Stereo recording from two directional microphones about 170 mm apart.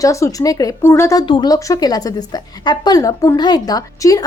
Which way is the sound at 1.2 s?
25° left (ahead or behind).